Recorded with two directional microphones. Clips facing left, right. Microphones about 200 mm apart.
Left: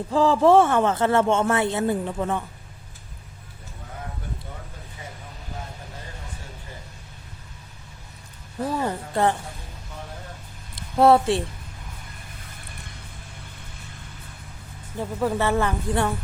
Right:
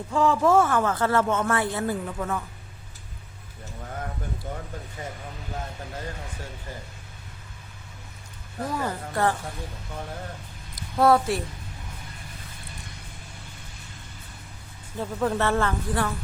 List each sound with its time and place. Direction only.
0.1 s speech: 30° left (ahead or behind)
8.7 s speech: 25° left (ahead or behind)
10.8 s speech: 25° left (ahead or behind)
14.9 s speech: 10° left (ahead or behind)